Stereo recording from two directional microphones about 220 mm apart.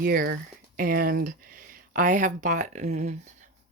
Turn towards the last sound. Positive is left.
turn(degrees=-30)  # may be behind; listen again after turning